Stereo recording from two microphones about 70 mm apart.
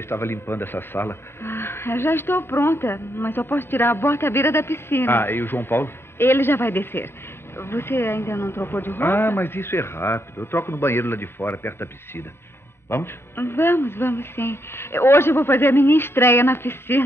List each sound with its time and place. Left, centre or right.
0.1 s speech: left